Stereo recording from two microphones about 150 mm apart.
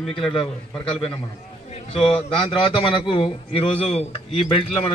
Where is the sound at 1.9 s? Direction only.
40° left (ahead or behind).